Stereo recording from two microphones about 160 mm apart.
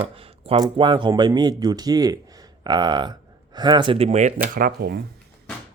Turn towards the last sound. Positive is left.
turn(degrees=-75)  # may be behind; listen again after turning